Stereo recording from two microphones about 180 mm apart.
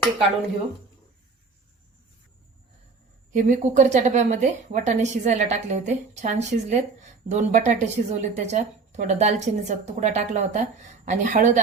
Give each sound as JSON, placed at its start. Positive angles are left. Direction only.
{"t": 3.3, "sound": "a woman's voice", "side_deg": -50}